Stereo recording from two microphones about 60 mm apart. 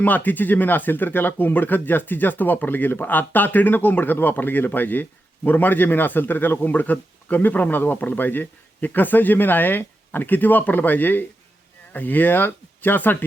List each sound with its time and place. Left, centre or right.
0.0 s a man's voice: left